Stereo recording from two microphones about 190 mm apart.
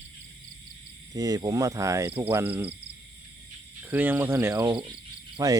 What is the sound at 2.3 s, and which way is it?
Speech, 10° right (ahead or behind).